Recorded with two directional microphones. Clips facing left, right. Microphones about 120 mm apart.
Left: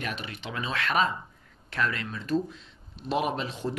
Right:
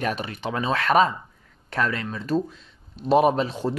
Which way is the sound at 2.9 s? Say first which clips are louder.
Right 10 dB; 40° right (ahead or behind).